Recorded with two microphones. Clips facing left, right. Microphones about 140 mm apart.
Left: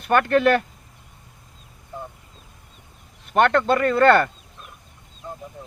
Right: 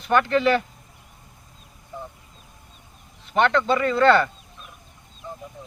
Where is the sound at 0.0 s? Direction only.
50° left (ahead or behind).